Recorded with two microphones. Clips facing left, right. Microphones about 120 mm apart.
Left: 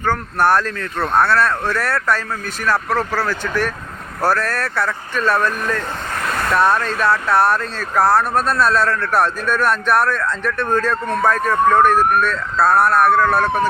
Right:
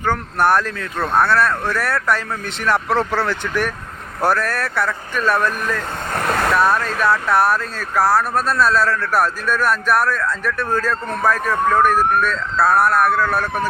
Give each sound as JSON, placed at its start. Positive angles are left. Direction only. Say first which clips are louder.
{"t": 0.0, "sound": "speech", "louder": "left 1 dB", "side_deg": -15}
{"t": 2.6, "sound": "speech", "louder": "right 1 dB", "side_deg": -25}
{"t": 6.6, "sound": "speech", "louder": "left 1 dB", "side_deg": -5}